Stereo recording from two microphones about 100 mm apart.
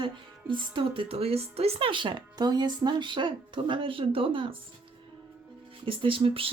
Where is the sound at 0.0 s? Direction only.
50° right (ahead or behind); by 1.9 s 90° right.